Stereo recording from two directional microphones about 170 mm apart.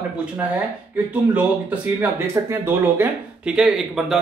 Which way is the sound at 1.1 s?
10° right (ahead or behind).